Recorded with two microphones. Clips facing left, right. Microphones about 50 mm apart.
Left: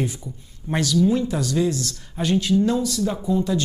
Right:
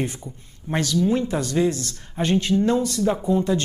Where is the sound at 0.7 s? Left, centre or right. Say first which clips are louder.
Left 1 dB; right.